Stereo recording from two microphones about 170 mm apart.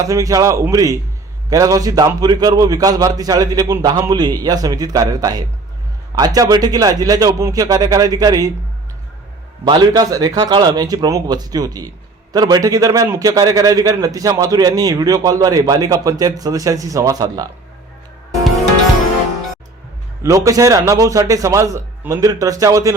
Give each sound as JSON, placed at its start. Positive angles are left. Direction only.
{"t": 0.0, "sound": "a man's voice", "side_deg": -20}
{"t": 9.6, "sound": "a man's voice", "side_deg": -25}
{"t": 20.2, "sound": "a man's voice", "side_deg": -20}